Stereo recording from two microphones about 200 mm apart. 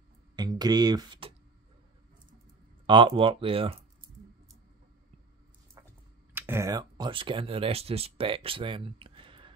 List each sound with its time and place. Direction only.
0.4 s speech: 20° right (ahead or behind)
2.9 s speech: 25° right (ahead or behind)
6.3 s speech: 10° right (ahead or behind)